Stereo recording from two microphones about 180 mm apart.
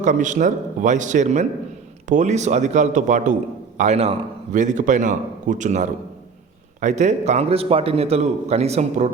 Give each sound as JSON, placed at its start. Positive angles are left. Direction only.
{"t": 0.0, "sound": "a man's voice", "side_deg": -45}